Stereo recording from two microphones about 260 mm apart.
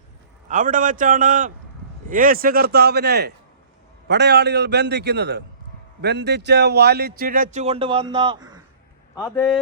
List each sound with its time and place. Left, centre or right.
0.4 s speech: right
9.1 s a man's voice: centre